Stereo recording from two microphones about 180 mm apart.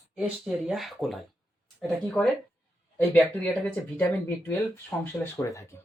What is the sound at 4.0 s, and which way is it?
Speech, 10° left (ahead or behind).